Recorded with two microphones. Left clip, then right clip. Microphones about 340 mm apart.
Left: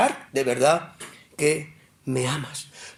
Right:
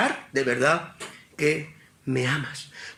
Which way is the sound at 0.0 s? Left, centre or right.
Centre.